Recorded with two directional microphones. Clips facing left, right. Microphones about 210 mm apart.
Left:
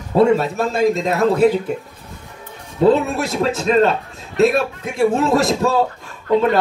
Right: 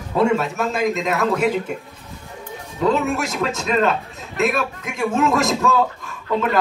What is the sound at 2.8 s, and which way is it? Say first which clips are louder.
A man's voice: left 5 dB; 35° left (ahead or behind).